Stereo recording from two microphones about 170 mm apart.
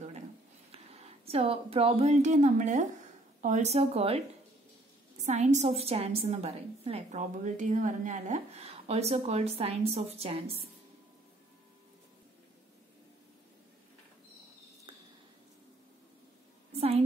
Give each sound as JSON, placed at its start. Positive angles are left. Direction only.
{"t": 0.7, "sound": "a woman's voice", "side_deg": -35}
{"t": 5.2, "sound": "a woman's voice", "side_deg": -45}
{"t": 16.7, "sound": "a sound", "side_deg": -35}